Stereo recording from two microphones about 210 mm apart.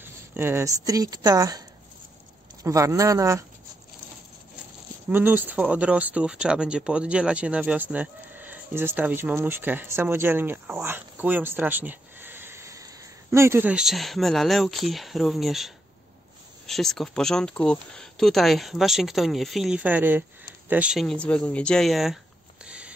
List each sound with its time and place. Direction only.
0.0 s speech: 10° right (ahead or behind)
2.6 s speech: 15° right (ahead or behind)
5.1 s speech: 10° right (ahead or behind)
22.7 s a sound: 5° right (ahead or behind)